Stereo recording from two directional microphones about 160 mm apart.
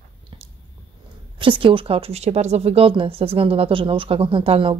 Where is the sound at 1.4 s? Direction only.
30° right (ahead or behind).